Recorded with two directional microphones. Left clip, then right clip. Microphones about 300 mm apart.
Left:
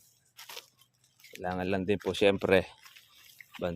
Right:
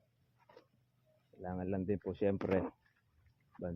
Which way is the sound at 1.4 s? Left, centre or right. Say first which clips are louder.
Left 8 dB; left.